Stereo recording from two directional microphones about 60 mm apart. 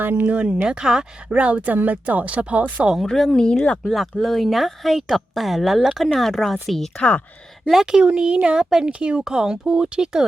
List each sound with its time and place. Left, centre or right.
0.0 s speech: right
0.3 s a woman's voice: centre
3.0 s speech: centre
3.8 s speech: centre
6.9 s speech: left
7.7 s a woman's voice: centre